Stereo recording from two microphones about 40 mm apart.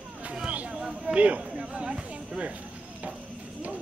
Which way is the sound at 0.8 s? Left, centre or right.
Right.